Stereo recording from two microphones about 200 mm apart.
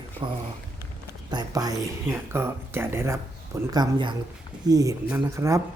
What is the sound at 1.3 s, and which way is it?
Speech, 20° right (ahead or behind).